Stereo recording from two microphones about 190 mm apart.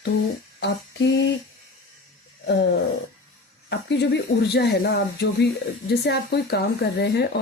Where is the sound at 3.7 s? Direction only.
65° left (ahead or behind).